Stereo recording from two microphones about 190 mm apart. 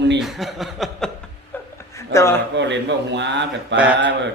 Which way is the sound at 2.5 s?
70° right (ahead or behind).